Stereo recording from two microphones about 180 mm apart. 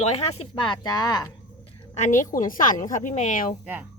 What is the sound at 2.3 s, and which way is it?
A woman's voice, 50° left (ahead or behind).